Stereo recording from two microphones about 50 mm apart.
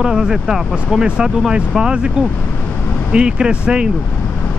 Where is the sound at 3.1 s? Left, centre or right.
Centre.